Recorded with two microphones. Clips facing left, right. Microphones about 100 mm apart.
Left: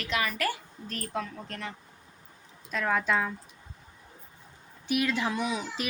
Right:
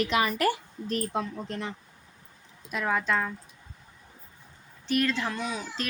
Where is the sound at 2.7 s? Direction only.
5° right (ahead or behind).